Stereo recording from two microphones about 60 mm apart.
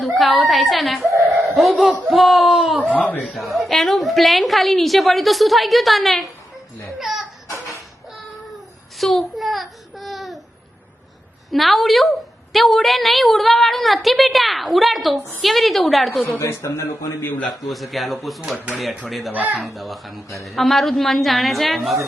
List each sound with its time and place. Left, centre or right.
0.0 s a woman's voice: centre
3.1 s a man's voice: centre
3.3 s a woman's voice: centre
7.0 s a sound: centre
9.0 s a sound: centre
11.5 s a woman's voice: centre
16.4 s speech: left
17.2 s a man's voice: left
17.6 s a woman's voice: centre
19.3 s speech: right
19.5 s a woman's voice: centre